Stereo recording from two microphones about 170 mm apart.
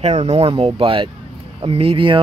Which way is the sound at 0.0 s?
40° right (ahead or behind).